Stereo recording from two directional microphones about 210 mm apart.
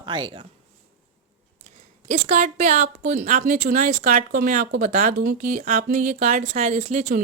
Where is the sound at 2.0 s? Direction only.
35° right (ahead or behind).